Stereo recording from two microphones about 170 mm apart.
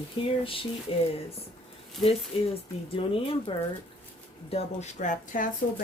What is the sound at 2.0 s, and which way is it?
Speech, centre (ahead or behind).